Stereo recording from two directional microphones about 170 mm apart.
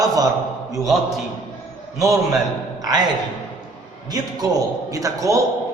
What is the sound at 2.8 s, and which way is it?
Speech, 20° right (ahead or behind).